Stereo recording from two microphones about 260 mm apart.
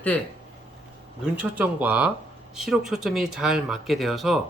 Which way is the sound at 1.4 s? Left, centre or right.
Centre.